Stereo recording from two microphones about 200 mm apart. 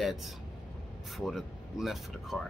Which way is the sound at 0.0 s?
Centre (ahead or behind).